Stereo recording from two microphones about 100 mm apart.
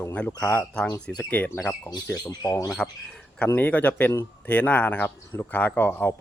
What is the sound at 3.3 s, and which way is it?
Speech, 15° left (ahead or behind).